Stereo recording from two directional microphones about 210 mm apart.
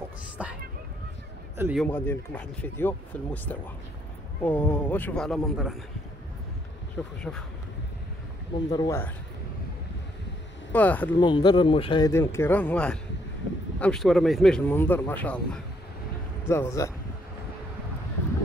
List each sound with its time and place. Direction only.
0.4 s speech: 5° right (ahead or behind)
1.6 s speech: 5° right (ahead or behind)
1.9 s speech: 10° left (ahead or behind)
4.4 s speech: 5° left (ahead or behind)
7.2 s speech: 5° left (ahead or behind)
8.6 s speech: 20° left (ahead or behind)
10.7 s speech: 10° left (ahead or behind)
11.1 s speech: 20° left (ahead or behind)
12.1 s speech: 10° left (ahead or behind)